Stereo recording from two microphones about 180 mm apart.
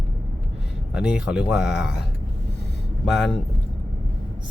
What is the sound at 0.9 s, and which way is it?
Speech, 5° right (ahead or behind).